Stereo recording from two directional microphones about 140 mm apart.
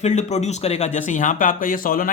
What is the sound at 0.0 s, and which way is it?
Speech, 55° left (ahead or behind).